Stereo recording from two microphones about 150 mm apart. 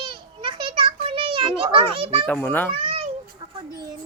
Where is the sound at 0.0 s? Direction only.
35° right (ahead or behind).